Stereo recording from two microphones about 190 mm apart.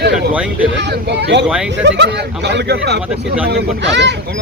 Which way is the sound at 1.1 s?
65° right (ahead or behind).